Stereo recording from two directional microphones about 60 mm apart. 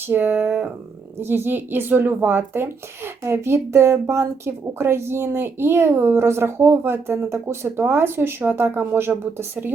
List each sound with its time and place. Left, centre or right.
0.1 s a woman's voice: right